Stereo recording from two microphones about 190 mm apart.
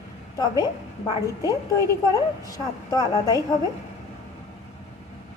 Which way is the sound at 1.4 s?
20° left (ahead or behind).